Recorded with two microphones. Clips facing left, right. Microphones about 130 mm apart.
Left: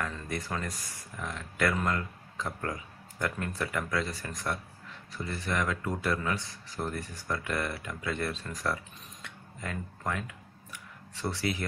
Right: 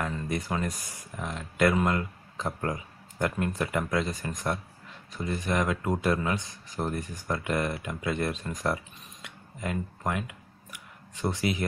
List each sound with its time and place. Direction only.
0.0 s speech: 15° right (ahead or behind)
9.2 s clicking: 15° right (ahead or behind)